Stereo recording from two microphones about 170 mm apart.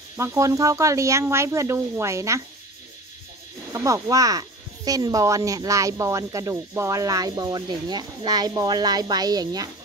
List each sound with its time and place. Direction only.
0.2 s speech: 15° right (ahead or behind)
3.7 s speech: 20° right (ahead or behind)